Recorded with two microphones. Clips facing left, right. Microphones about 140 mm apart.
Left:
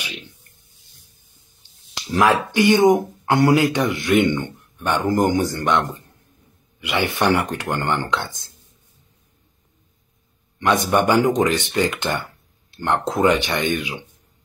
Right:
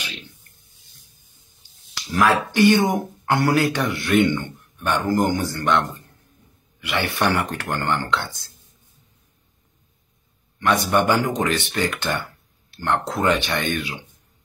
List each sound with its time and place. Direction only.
2.0 s speech: 25° left (ahead or behind)
6.8 s speech: 15° left (ahead or behind)
10.6 s speech: 15° left (ahead or behind)